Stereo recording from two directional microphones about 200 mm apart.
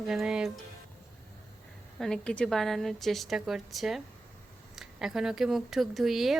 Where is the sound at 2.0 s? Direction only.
5° left (ahead or behind).